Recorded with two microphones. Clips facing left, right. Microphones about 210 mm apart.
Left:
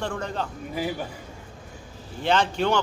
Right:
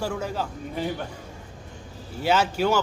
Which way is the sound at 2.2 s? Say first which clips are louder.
Right 1 dB; 5° right (ahead or behind).